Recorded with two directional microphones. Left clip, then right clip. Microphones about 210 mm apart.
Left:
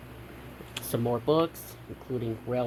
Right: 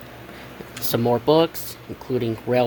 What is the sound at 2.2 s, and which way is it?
Speech, 30° right (ahead or behind).